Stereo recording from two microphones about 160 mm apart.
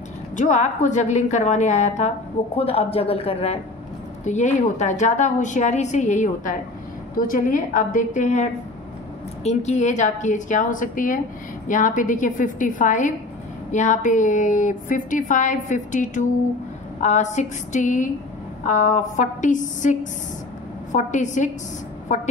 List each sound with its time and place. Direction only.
0.4 s a woman's voice: 50° left (ahead or behind)
4.2 s a woman's voice: 50° left (ahead or behind)